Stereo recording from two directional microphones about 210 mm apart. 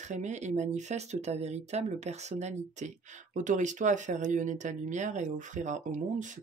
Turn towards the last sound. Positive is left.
turn(degrees=-35)  # may be behind; listen again after turning